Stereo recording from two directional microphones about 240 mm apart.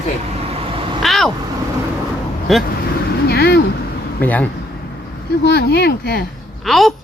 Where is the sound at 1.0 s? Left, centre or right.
Centre.